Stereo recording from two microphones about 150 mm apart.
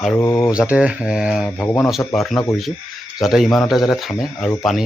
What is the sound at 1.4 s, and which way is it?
Speech, 15° left (ahead or behind).